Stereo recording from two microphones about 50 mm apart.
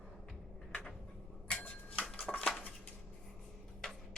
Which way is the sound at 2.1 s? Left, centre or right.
Left.